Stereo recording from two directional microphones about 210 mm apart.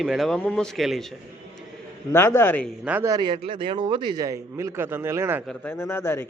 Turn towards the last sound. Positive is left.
turn(degrees=10)  # may be behind; listen again after turning